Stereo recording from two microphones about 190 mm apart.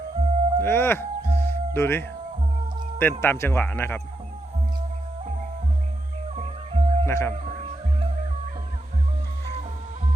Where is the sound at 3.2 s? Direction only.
10° left (ahead or behind).